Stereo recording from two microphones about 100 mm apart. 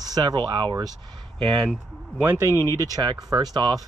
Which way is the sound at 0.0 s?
40° right (ahead or behind).